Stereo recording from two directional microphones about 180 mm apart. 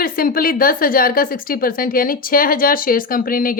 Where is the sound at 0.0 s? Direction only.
55° left (ahead or behind).